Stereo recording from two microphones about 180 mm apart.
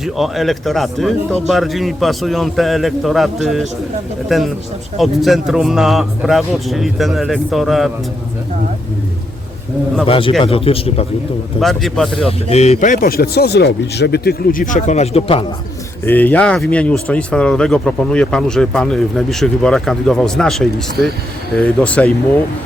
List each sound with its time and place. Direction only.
0.0 s speech: centre (ahead or behind)
10.1 s speech: 30° left (ahead or behind)
11.6 s speech: centre (ahead or behind)
12.2 s speech: 35° left (ahead or behind)
16.0 s speech: 10° left (ahead or behind)